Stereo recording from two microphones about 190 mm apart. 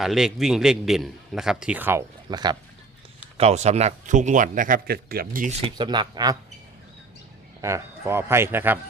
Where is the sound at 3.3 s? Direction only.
35° right (ahead or behind).